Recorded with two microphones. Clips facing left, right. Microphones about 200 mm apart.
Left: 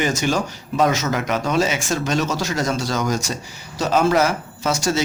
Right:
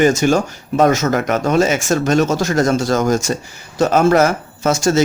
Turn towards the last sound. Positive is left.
turn(degrees=-45)  # may be behind; listen again after turning